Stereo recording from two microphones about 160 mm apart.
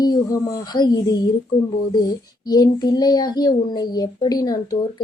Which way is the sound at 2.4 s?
25° left (ahead or behind).